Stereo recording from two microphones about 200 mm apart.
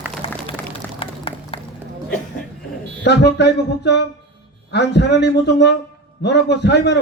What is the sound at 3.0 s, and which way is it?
A man's voice, 60° left (ahead or behind).